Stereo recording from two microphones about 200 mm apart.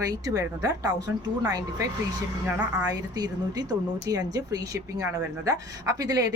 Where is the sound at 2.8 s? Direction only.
20° right (ahead or behind).